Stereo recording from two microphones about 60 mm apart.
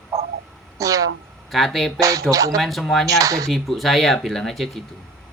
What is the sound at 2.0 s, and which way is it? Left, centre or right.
Speech, right.